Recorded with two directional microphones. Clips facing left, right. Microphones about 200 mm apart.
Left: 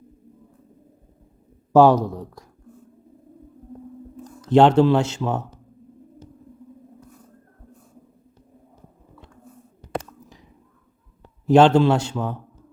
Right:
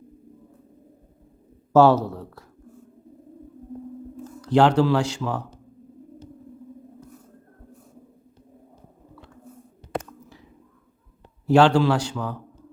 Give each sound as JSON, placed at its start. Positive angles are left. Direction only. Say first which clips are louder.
{"t": 1.7, "sound": "a man's voice", "louder": "left 2 dB", "side_deg": 15}
{"t": 4.2, "sound": "speech", "louder": "left 3 dB", "side_deg": 20}
{"t": 11.4, "sound": "a man's voice", "louder": "left 3 dB", "side_deg": 20}